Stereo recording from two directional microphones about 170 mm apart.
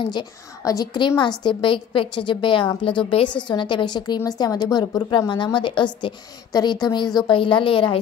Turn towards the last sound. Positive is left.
turn(degrees=30)  # may be behind; listen again after turning